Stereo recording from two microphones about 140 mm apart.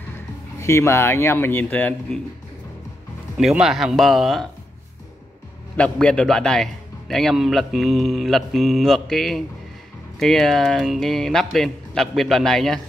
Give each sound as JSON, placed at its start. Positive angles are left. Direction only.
{"t": 0.6, "sound": "speech", "side_deg": 20}
{"t": 3.3, "sound": "a man's voice", "side_deg": -5}
{"t": 5.8, "sound": "a man's voice", "side_deg": 5}